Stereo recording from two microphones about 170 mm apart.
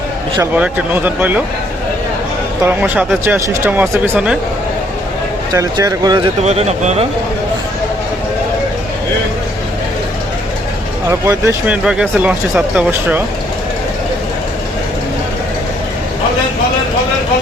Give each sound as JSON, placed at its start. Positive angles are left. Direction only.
{"t": 0.5, "sound": "speech", "side_deg": -10}
{"t": 2.6, "sound": "speech", "side_deg": -10}
{"t": 5.5, "sound": "speech", "side_deg": -20}
{"t": 6.4, "sound": "speech", "side_deg": -40}
{"t": 11.1, "sound": "speech", "side_deg": -15}